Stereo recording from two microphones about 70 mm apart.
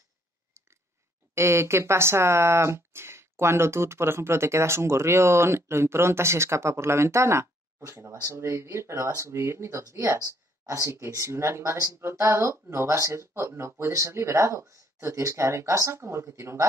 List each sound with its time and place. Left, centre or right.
1.3 s speech: right